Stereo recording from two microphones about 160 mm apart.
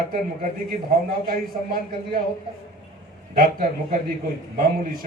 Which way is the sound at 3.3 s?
60° right (ahead or behind).